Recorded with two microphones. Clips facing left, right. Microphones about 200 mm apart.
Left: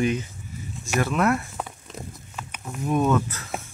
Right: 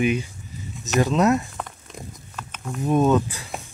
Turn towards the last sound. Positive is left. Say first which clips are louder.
# right 3 dB
turn(degrees=-15)  # may be behind; listen again after turning